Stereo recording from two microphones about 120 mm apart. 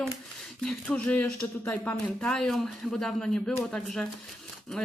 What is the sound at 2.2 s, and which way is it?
Speech, 5° left (ahead or behind).